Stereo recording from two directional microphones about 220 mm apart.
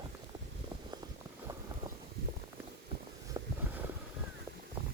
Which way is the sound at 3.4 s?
15° right (ahead or behind).